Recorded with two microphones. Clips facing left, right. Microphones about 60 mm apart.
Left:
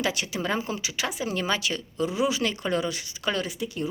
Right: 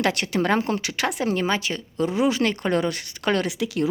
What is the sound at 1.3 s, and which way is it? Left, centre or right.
Speech, right.